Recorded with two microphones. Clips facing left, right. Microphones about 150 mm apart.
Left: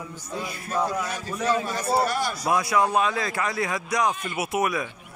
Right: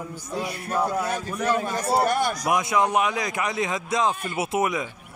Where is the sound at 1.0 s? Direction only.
50° right (ahead or behind).